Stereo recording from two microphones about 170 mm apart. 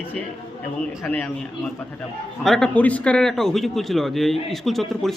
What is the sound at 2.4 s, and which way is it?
A man's voice, centre (ahead or behind).